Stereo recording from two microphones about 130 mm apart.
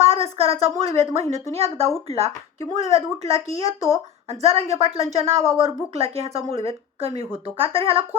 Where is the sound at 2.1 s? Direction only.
50° right (ahead or behind).